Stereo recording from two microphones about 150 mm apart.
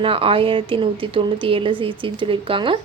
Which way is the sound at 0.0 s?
35° right (ahead or behind).